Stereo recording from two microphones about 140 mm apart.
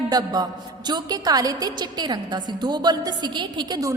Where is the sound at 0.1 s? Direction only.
30° right (ahead or behind).